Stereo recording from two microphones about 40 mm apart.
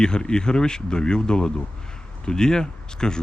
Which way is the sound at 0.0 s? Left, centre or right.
Left.